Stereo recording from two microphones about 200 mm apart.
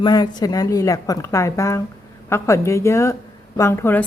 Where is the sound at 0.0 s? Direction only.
20° left (ahead or behind).